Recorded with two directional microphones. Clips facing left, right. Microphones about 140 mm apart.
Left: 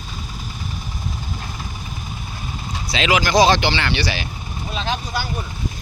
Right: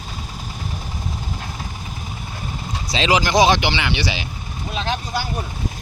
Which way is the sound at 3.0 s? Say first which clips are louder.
Even; 30° right (ahead or behind).